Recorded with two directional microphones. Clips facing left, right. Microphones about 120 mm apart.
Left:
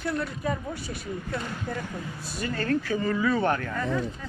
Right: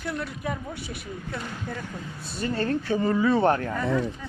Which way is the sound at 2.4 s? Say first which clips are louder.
Right 1 dB; 30° right (ahead or behind).